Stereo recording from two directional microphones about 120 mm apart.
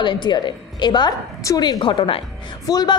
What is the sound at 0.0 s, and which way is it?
A woman's voice, 40° left (ahead or behind).